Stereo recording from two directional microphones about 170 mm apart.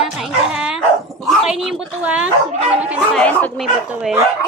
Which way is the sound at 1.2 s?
Centre (ahead or behind).